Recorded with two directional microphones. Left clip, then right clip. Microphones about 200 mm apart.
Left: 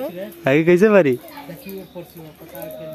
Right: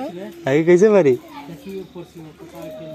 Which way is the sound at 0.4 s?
40° left (ahead or behind).